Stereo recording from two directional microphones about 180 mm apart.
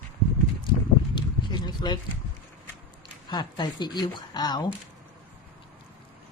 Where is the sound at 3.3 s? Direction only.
25° left (ahead or behind).